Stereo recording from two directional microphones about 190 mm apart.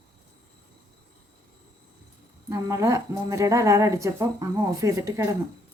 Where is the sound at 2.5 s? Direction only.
15° right (ahead or behind).